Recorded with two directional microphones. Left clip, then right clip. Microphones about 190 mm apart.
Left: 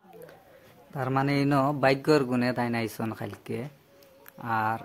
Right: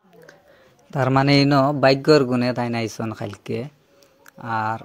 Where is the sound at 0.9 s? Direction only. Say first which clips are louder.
Right 9 dB; 35° right (ahead or behind).